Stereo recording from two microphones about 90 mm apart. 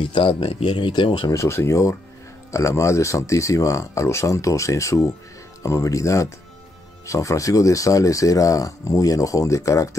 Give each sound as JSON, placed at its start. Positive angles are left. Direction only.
{"t": 0.0, "sound": "speech", "side_deg": 85}
{"t": 1.3, "sound": "speech", "side_deg": 30}